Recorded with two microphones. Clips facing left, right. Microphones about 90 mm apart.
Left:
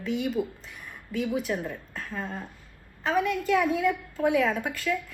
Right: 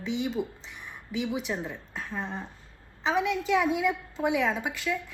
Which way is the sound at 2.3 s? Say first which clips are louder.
Even; 25° right (ahead or behind).